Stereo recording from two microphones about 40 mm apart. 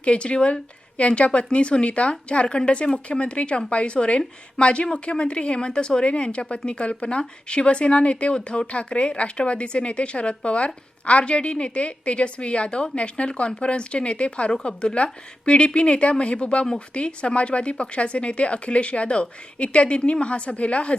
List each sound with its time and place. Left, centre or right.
0.0 s speech: left